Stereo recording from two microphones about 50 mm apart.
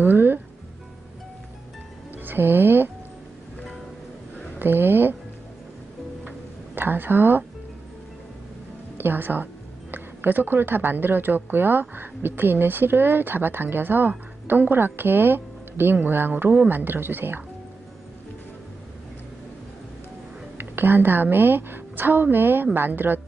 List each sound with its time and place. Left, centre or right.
0.0 s speech: right
2.2 s speech: right
4.6 s a sound: right
6.7 s a woman's voice: right
8.9 s speech: right
20.5 s a woman's voice: right